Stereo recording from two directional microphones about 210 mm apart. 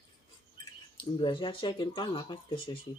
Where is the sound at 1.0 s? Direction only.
25° left (ahead or behind).